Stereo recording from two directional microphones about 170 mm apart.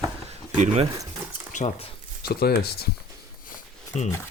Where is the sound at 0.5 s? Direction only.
40° right (ahead or behind).